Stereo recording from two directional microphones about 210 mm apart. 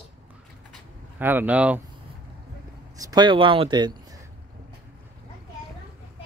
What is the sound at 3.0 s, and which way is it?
Speech, 20° right (ahead or behind).